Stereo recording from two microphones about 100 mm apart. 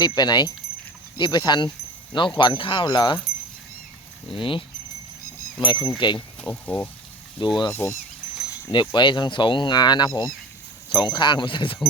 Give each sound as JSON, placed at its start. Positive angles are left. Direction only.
{"t": 0.0, "sound": "speech", "side_deg": 45}
{"t": 4.3, "sound": "speech", "side_deg": 60}
{"t": 6.1, "sound": "speech", "side_deg": 15}
{"t": 7.3, "sound": "speech", "side_deg": 50}
{"t": 7.7, "sound": "speech", "side_deg": 25}
{"t": 8.7, "sound": "speech", "side_deg": 50}